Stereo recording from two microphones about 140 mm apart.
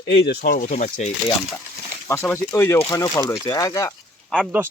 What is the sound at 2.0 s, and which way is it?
Speech, 15° left (ahead or behind).